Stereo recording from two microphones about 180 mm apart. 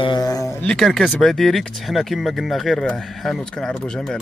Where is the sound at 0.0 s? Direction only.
20° left (ahead or behind).